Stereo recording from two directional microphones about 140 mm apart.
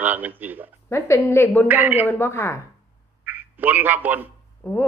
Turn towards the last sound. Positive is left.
turn(degrees=15)  # may be behind; listen again after turning